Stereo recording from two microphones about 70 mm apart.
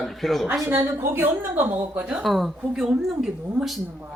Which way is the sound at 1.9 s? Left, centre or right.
Centre.